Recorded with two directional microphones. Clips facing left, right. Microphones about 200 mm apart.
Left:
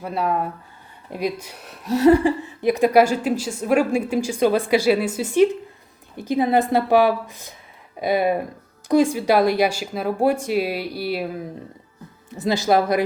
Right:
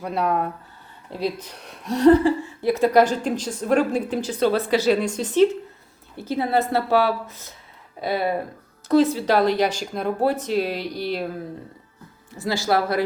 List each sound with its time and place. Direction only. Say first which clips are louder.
0.0 s speech: even; centre (ahead or behind)
1.1 s a woman's voice: left 1 dB; 10° left (ahead or behind)